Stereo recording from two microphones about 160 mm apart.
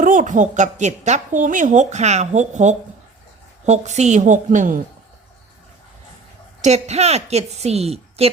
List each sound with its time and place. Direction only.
0.0 s a woman's voice: 55° right (ahead or behind)
6.6 s a woman's voice: 45° right (ahead or behind)